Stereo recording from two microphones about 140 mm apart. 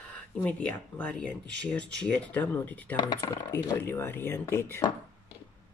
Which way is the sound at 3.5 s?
15° left (ahead or behind).